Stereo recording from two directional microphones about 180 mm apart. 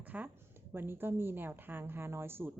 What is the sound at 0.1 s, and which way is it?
A woman's voice, 10° right (ahead or behind).